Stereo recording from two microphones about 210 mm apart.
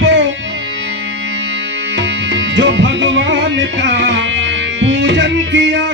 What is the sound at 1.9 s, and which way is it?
Music, 60° right (ahead or behind).